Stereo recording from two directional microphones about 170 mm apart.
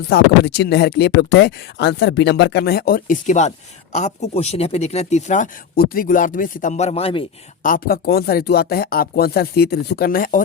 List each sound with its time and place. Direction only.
0.1 s speech: 80° left; by 7.3 s 35° left (ahead or behind)
7.6 s speech: 55° left (ahead or behind)